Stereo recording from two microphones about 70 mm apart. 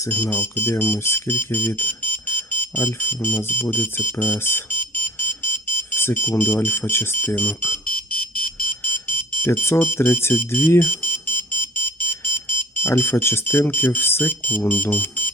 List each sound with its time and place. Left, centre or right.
0.1 s speech: left
8.8 s alarm: left
9.7 s speech: left